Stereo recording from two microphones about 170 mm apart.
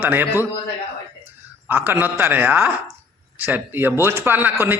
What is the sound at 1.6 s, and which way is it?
Speech, 10° right (ahead or behind).